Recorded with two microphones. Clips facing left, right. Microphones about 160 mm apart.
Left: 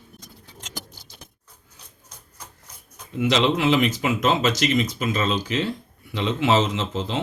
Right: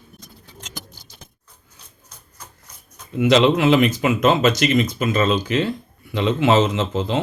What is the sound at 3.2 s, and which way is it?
Speech, 55° right (ahead or behind).